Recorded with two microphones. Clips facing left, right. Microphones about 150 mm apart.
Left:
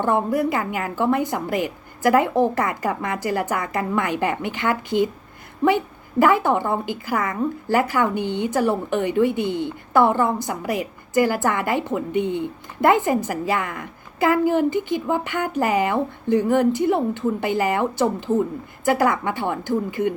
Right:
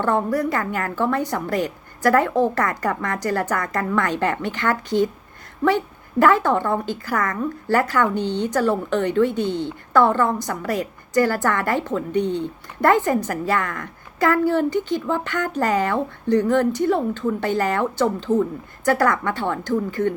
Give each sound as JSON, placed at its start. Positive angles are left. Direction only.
{"t": 0.0, "sound": "a woman's voice", "side_deg": 15}